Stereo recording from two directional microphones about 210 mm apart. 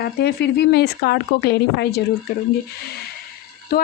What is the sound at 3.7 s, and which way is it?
Speech, 45° left (ahead or behind).